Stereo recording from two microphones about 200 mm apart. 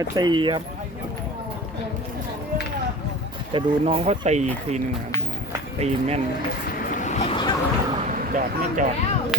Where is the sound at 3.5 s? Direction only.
30° right (ahead or behind).